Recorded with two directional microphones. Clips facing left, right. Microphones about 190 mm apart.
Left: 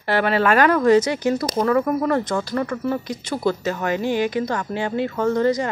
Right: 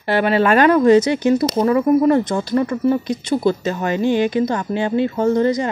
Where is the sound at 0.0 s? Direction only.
20° right (ahead or behind).